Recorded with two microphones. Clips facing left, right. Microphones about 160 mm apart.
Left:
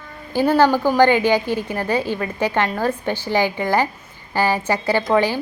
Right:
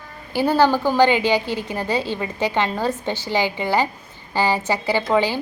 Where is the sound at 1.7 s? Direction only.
15° right (ahead or behind).